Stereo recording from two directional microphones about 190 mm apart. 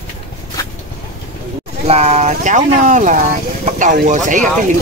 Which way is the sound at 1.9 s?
35° right (ahead or behind).